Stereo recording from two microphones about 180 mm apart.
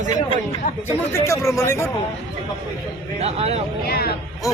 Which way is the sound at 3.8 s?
60° left (ahead or behind).